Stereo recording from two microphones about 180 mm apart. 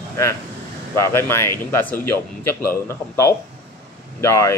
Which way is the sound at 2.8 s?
15° left (ahead or behind).